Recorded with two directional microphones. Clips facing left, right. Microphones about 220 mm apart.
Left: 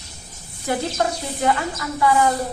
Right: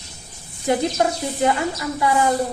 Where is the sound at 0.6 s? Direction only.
20° right (ahead or behind).